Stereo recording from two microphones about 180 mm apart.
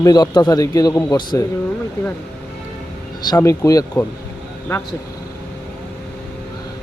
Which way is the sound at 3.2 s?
20° left (ahead or behind).